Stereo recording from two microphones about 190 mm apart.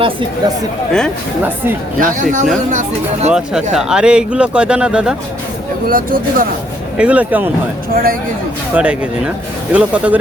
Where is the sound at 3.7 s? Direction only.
5° right (ahead or behind).